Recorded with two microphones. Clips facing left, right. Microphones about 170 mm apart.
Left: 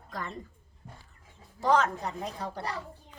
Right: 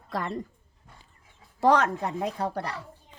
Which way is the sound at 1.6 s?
65° right (ahead or behind).